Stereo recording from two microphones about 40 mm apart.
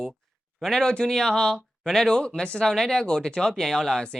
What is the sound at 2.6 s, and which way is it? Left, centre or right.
Speech, centre.